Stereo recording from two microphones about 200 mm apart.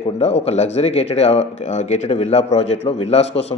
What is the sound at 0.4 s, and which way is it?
Speech, 30° left (ahead or behind).